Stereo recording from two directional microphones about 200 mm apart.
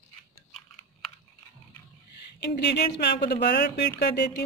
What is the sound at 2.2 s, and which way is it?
Speech, 55° left (ahead or behind).